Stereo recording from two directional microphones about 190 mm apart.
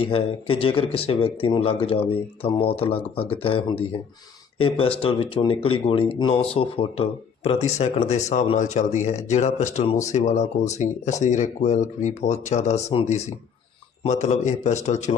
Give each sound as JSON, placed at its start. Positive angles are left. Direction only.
{"t": 0.0, "sound": "speech", "side_deg": 30}